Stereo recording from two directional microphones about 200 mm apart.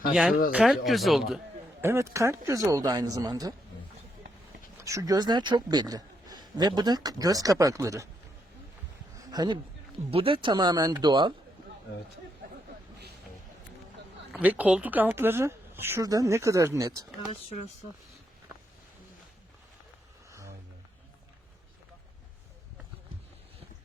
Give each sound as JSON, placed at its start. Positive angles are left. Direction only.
{"t": 0.1, "sound": "speech", "side_deg": -5}
{"t": 1.8, "sound": "speech", "side_deg": -15}
{"t": 4.8, "sound": "a man's voice", "side_deg": -15}
{"t": 9.2, "sound": "a man's voice", "side_deg": -20}
{"t": 14.3, "sound": "speech", "side_deg": -5}